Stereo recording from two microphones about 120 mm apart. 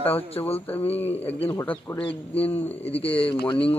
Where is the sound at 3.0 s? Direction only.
50° left (ahead or behind).